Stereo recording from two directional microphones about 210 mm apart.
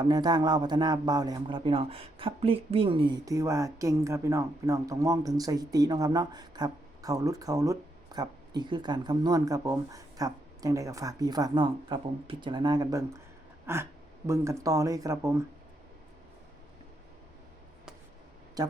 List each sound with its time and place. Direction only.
0.0 s a man's voice: 20° right (ahead or behind)
18.6 s speech: 20° right (ahead or behind)